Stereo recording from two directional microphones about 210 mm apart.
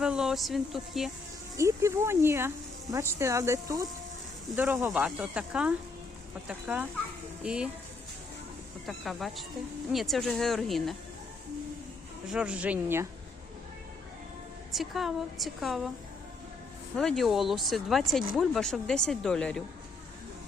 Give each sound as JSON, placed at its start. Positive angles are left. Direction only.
{"t": 0.0, "sound": "speech", "side_deg": -5}
{"t": 1.5, "sound": "speech", "side_deg": -15}
{"t": 8.9, "sound": "speech", "side_deg": 0}
{"t": 12.3, "sound": "speech", "side_deg": -5}
{"t": 14.7, "sound": "speech", "side_deg": 0}
{"t": 17.0, "sound": "speech", "side_deg": 0}